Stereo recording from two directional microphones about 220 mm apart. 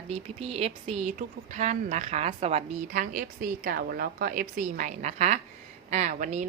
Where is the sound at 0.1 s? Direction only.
25° right (ahead or behind).